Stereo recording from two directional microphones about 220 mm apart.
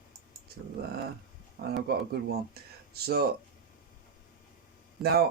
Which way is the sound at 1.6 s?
40° right (ahead or behind).